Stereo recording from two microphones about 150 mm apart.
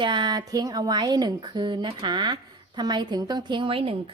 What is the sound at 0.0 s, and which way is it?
Speech, 30° right (ahead or behind).